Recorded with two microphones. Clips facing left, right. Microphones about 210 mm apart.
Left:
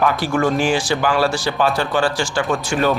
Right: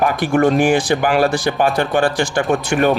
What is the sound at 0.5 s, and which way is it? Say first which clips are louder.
Speech: right 4 dB; 55° right (ahead or behind).